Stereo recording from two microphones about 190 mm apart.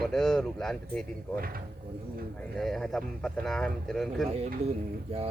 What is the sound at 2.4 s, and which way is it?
Speech, centre (ahead or behind).